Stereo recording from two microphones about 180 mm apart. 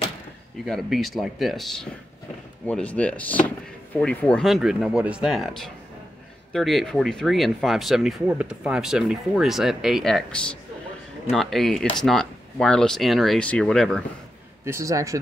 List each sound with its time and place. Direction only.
0.7 s speech: centre (ahead or behind)
14.6 s speech: 15° right (ahead or behind)